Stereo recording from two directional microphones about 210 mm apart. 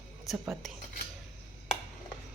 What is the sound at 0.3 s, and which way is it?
Speech, centre (ahead or behind).